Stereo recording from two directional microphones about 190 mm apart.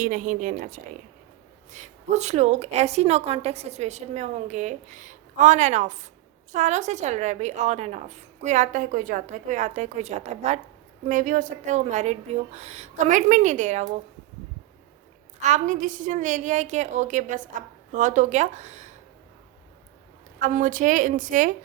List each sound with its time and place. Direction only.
0.0 s a woman's voice: 45° right (ahead or behind)
15.4 s a woman's voice: 40° right (ahead or behind)
20.5 s speech: 45° right (ahead or behind)